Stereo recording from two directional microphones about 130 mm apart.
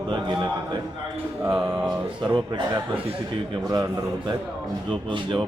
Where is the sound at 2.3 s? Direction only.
35° right (ahead or behind).